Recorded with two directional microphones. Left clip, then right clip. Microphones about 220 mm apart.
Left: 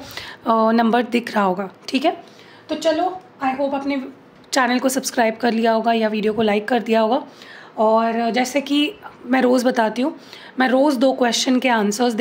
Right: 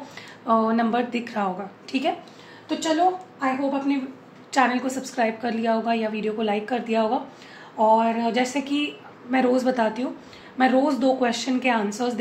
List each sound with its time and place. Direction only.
0.1 s a woman's voice: 55° left (ahead or behind)
3.3 s a woman's voice: 55° left (ahead or behind)